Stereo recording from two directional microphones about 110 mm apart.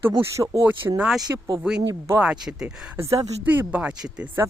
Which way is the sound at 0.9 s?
5° right (ahead or behind).